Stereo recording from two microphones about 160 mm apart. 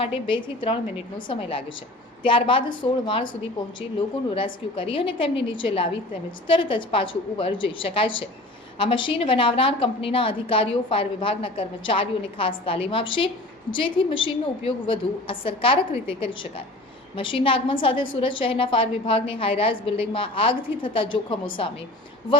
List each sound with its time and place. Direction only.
0.0 s a woman's voice: 35° left (ahead or behind)